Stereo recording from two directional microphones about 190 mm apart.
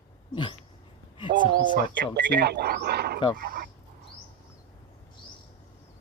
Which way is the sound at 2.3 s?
60° right (ahead or behind).